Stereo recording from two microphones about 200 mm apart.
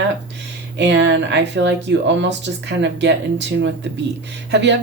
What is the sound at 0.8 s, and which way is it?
Speech, 60° right (ahead or behind).